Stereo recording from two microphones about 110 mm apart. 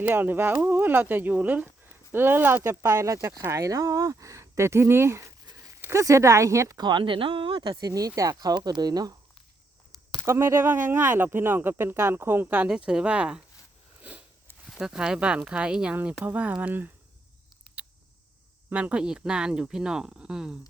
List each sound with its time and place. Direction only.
0.0 s speech: 20° right (ahead or behind); by 7.7 s 50° right (ahead or behind)
7.7 s speech: 35° right (ahead or behind)
10.2 s speech: 25° right (ahead or behind)
14.0 s sniff: 15° right (ahead or behind)
14.8 s speech: 5° right (ahead or behind)
18.7 s speech: 10° right (ahead or behind)